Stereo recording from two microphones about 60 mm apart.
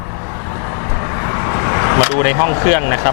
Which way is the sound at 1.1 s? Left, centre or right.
Left.